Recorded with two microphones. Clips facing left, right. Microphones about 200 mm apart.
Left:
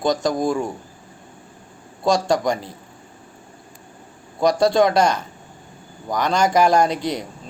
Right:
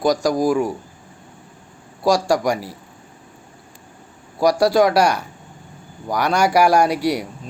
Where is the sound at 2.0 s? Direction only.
25° left (ahead or behind).